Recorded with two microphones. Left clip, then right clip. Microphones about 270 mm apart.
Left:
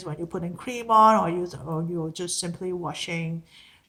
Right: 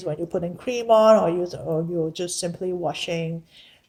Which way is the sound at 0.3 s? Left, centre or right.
Centre.